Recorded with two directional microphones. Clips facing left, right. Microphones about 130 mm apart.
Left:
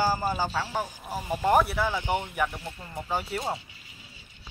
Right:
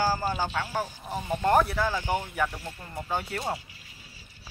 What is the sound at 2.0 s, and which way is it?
Speech, 20° left (ahead or behind).